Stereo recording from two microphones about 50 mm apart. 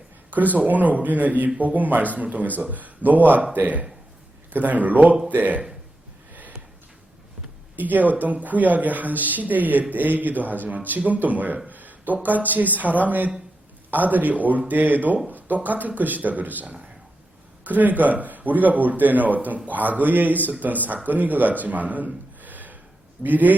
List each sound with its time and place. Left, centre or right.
0.3 s speech: right
7.8 s speech: right
11.7 s a sound: right
12.5 s speech: right
16.6 s a sound: right
17.6 s speech: right